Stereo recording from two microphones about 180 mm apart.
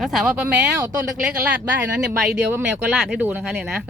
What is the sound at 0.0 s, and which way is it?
Speech, centre (ahead or behind).